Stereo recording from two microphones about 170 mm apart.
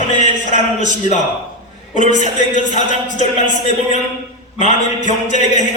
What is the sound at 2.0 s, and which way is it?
Music, 45° left (ahead or behind).